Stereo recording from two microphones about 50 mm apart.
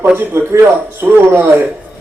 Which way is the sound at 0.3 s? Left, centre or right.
Right.